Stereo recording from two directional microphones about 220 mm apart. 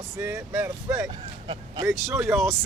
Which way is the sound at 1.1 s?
25° right (ahead or behind).